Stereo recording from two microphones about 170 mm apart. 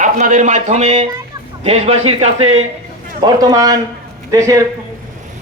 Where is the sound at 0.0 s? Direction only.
45° right (ahead or behind).